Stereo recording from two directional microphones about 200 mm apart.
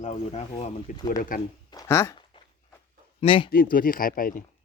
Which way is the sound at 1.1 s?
45° left (ahead or behind).